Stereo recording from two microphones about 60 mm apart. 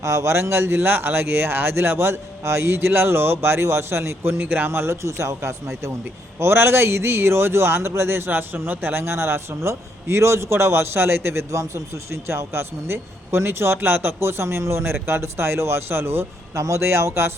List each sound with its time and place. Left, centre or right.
0.0 s speech: right
16.6 s speech: right